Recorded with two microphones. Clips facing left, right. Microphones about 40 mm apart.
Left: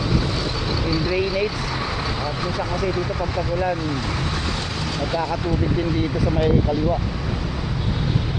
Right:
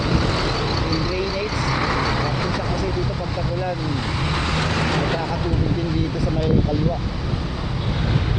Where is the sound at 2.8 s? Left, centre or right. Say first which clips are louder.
Left 1 dB; left.